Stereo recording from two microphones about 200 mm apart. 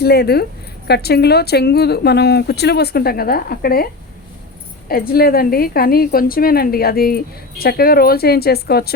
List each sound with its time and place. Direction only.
0.0 s a woman's voice: 50° left (ahead or behind)
4.9 s a woman's voice: 50° left (ahead or behind)